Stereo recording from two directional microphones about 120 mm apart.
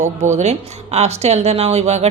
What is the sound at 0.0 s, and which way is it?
Speech, 80° right.